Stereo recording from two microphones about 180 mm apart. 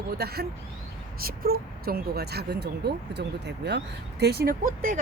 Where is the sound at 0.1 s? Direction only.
60° right (ahead or behind).